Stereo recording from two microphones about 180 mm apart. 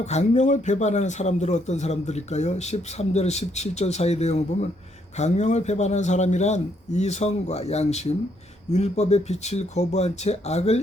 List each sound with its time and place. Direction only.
0.0 s speech: 40° left (ahead or behind)